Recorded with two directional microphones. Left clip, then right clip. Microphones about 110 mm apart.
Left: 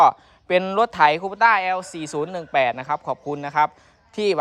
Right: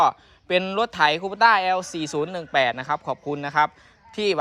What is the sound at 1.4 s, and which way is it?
Speech, 70° left (ahead or behind).